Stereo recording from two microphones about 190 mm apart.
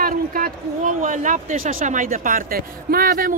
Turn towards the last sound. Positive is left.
turn(degrees=-50)  # may be behind; listen again after turning